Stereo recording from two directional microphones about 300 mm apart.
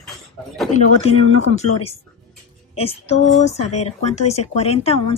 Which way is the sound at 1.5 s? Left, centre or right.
Centre.